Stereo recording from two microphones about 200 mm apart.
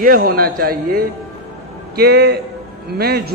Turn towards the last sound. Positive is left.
turn(degrees=-50)  # may be behind; listen again after turning